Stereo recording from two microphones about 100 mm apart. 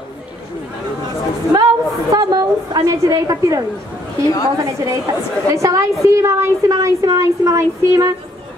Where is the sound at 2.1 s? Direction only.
40° right (ahead or behind).